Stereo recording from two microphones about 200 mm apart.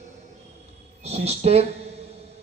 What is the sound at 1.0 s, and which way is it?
Speech, 30° right (ahead or behind).